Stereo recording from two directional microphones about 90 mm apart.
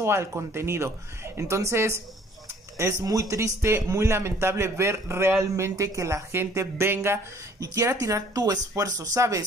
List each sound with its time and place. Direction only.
0.0 s speech: 30° right (ahead or behind)
7.6 s speech: 40° right (ahead or behind)